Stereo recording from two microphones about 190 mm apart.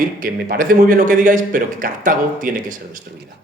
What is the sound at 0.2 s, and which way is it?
A man's voice, 45° right (ahead or behind).